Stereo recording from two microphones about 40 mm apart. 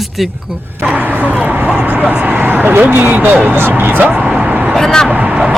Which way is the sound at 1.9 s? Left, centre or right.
Right.